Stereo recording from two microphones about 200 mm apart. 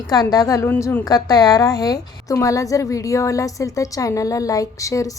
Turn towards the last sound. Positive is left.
turn(degrees=15)  # may be behind; listen again after turning